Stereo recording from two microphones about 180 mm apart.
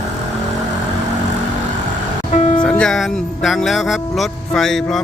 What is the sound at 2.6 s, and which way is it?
Speech, 5° left (ahead or behind).